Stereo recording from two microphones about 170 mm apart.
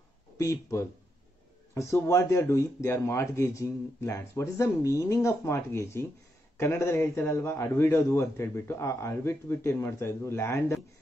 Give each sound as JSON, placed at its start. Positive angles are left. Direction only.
{"t": 0.4, "sound": "speech", "side_deg": 20}